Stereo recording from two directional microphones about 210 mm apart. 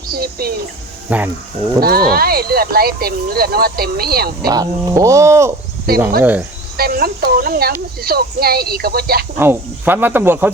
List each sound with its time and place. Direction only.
0.1 s speech: 45° right (ahead or behind)
1.1 s speech: 5° right (ahead or behind)
1.8 s speech: 45° right (ahead or behind)
4.4 s speech: 20° right (ahead or behind)
5.9 s speech: 45° right (ahead or behind)
9.4 s speech: 10° right (ahead or behind)